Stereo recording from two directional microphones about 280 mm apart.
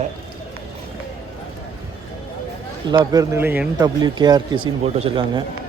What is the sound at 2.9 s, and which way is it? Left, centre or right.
Speech, centre.